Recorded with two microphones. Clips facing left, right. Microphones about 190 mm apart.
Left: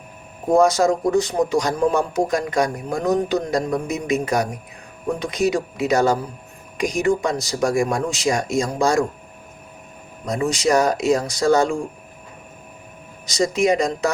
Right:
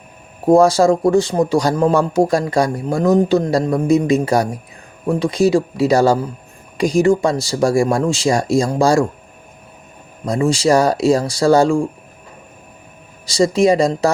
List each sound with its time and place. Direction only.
0.5 s speech: 30° right (ahead or behind)
10.2 s speech: 30° right (ahead or behind)
13.2 s speech: 30° right (ahead or behind)